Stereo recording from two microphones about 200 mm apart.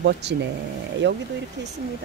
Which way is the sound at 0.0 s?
60° right (ahead or behind).